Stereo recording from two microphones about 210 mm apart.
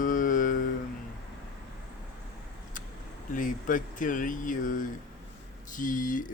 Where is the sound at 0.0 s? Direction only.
40° left (ahead or behind).